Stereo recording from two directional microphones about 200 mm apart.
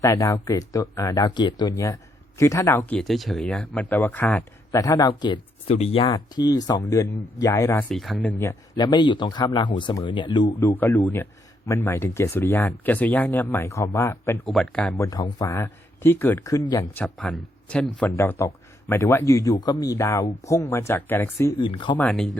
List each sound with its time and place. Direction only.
0.0 s speech: 15° left (ahead or behind)
3.0 s speech: centre (ahead or behind); by 10.7 s 20° left (ahead or behind)
10.7 s speech: 10° left (ahead or behind)
21.6 s speech: 25° left (ahead or behind)
21.9 s speech: 5° left (ahead or behind)